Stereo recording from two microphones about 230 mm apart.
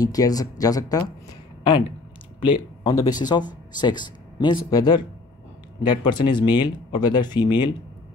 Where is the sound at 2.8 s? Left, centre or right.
Centre.